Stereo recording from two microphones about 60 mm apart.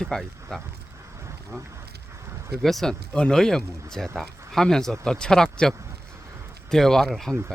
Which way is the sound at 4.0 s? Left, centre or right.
Centre.